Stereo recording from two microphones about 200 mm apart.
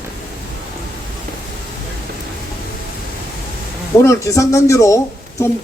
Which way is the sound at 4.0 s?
15° left (ahead or behind).